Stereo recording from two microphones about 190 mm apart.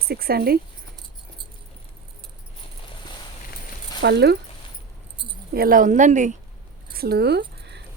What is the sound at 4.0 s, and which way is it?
Speech, 60° right (ahead or behind).